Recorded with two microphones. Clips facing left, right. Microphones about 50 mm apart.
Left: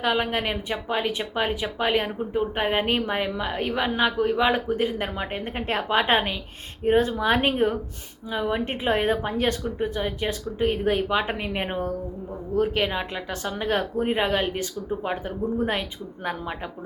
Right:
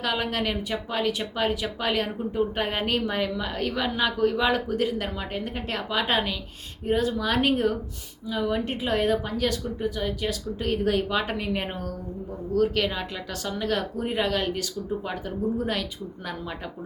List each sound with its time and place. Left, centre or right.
0.0 s speech: left